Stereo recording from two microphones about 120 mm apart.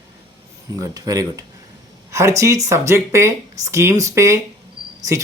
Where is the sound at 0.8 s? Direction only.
30° right (ahead or behind).